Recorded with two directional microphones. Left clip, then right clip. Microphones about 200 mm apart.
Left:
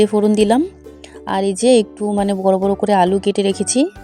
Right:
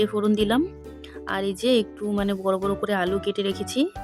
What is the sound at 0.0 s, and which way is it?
Speech, 20° left (ahead or behind).